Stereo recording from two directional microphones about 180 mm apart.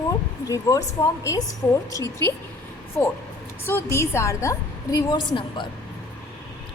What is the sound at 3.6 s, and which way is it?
A woman's voice, 15° left (ahead or behind).